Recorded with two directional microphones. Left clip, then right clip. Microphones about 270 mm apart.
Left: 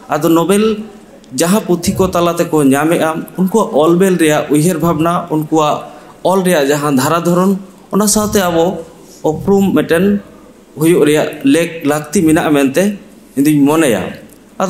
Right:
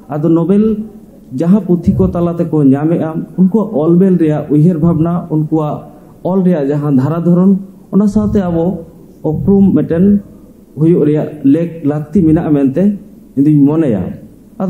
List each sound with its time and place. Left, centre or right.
0.1 s a man's voice: centre
3.5 s a man's voice: left
3.8 s a man's voice: centre
9.2 s a man's voice: left
9.6 s a man's voice: centre